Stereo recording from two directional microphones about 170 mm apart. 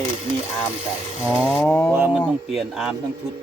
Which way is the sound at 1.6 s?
10° left (ahead or behind).